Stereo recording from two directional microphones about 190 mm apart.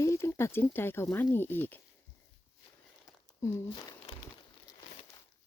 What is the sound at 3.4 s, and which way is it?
Speech, 20° left (ahead or behind).